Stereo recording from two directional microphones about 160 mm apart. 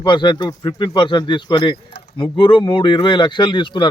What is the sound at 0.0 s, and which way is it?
Speech, 30° left (ahead or behind).